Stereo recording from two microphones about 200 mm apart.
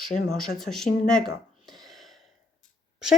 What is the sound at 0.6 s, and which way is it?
Speech, centre (ahead or behind).